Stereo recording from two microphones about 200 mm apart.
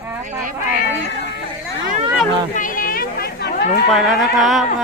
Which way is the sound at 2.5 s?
40° left (ahead or behind).